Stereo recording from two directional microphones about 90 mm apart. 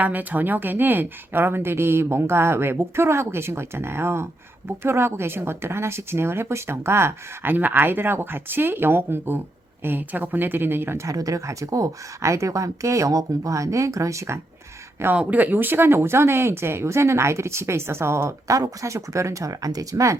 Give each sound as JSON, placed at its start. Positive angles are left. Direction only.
{"t": 0.0, "sound": "speech", "side_deg": -20}
{"t": 15.0, "sound": "speech", "side_deg": -15}